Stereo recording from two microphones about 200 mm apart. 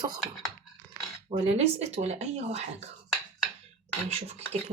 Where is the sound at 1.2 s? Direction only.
30° right (ahead or behind).